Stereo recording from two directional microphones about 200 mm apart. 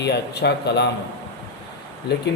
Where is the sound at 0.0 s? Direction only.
60° left (ahead or behind).